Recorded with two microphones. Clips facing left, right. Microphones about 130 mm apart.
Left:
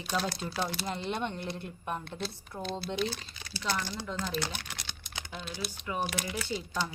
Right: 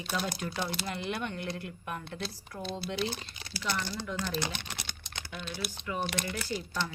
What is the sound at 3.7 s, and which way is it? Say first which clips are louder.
Speech: left 1 dB; 15° left (ahead or behind).